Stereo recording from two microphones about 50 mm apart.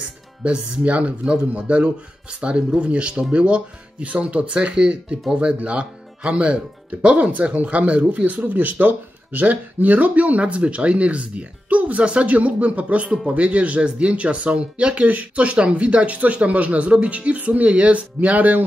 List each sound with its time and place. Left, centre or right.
0.4 s speech: right